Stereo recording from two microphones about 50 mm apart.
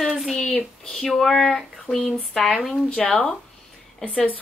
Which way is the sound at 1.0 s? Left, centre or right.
Centre.